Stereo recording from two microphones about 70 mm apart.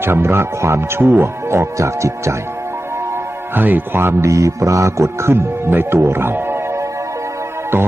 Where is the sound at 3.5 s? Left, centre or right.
Right.